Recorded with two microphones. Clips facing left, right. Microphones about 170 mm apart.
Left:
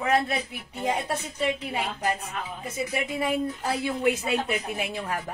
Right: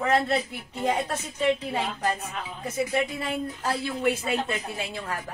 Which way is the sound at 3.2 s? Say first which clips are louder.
Left 3 dB; 15° left (ahead or behind).